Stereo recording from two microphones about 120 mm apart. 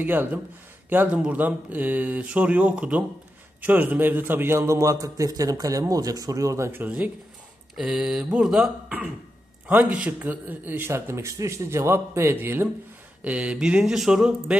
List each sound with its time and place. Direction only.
0.0 s a man's voice: 15° right (ahead or behind)
7.7 s a man's voice: 5° right (ahead or behind)